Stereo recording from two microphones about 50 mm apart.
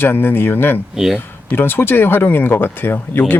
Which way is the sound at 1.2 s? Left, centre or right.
Left.